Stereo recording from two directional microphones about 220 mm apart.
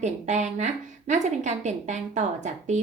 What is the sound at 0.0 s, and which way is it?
A woman's voice, 35° right (ahead or behind).